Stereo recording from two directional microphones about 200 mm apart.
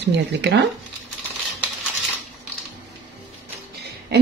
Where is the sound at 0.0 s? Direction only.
60° right (ahead or behind).